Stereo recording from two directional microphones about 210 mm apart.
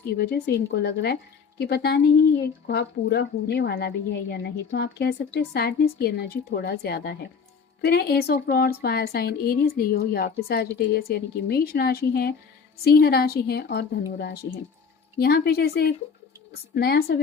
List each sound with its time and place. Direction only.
0.2 s a woman's voice: 50° left (ahead or behind)